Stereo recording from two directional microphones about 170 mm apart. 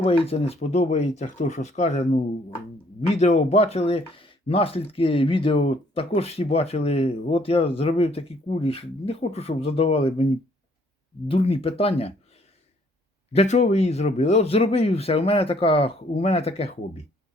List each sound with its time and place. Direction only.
0.0 s speech: 35° left (ahead or behind)
13.3 s speech: 40° left (ahead or behind)